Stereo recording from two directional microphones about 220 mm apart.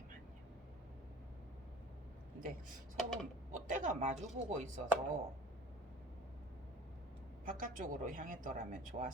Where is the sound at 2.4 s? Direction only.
35° right (ahead or behind).